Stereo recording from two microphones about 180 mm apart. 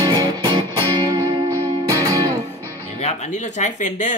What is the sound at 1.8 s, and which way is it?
Music, 20° right (ahead or behind).